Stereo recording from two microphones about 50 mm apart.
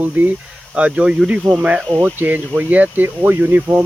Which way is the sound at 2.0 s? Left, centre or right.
Right.